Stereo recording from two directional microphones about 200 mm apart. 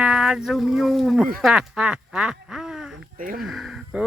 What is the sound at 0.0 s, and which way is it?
Speech, 5° right (ahead or behind).